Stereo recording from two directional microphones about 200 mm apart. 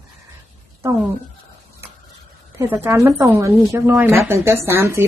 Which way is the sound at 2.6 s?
10° right (ahead or behind).